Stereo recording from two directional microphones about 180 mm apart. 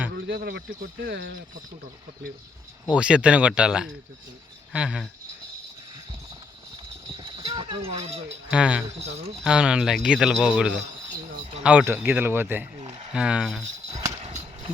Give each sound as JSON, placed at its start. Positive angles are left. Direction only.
{"t": 0.3, "sound": "speech", "side_deg": -60}
{"t": 2.9, "sound": "speech", "side_deg": -5}
{"t": 7.1, "sound": "clip-clop", "side_deg": -30}
{"t": 7.9, "sound": "speech", "side_deg": -35}
{"t": 8.4, "sound": "speech", "side_deg": -5}
{"t": 9.0, "sound": "speech", "side_deg": -35}
{"t": 9.4, "sound": "speech", "side_deg": -5}